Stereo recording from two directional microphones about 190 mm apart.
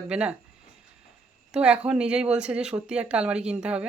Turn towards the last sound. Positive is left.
turn(degrees=-5)  # may be behind; listen again after turning